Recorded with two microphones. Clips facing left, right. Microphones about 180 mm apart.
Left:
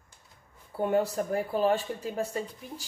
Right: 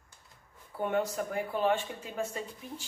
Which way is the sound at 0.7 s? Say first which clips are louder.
Left 4 dB; 35° left (ahead or behind).